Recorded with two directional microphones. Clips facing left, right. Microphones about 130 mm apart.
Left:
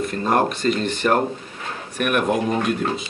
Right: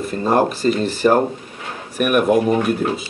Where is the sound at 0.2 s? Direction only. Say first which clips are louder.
Right 3 dB; 30° right (ahead or behind).